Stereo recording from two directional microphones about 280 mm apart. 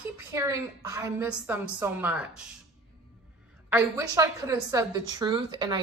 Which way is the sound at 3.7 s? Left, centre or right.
Centre.